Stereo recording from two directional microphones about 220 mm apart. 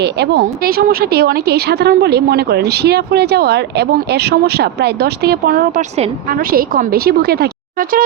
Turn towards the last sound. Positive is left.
turn(degrees=-45)  # may be behind; listen again after turning